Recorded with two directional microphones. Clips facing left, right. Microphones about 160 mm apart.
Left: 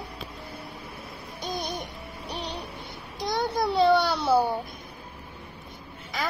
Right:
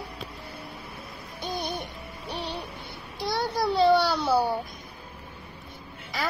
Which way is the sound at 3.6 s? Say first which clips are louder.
Right 1 dB; centre (ahead or behind).